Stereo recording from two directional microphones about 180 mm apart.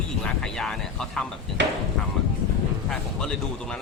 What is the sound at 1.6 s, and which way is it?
Speech, 70° right (ahead or behind).